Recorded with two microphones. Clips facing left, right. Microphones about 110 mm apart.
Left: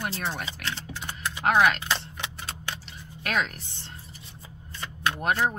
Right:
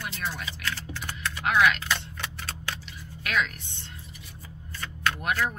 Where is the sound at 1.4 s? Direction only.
40° left (ahead or behind); by 2.8 s 20° left (ahead or behind).